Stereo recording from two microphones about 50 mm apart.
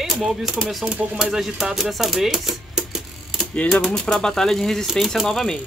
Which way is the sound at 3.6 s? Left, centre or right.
Left.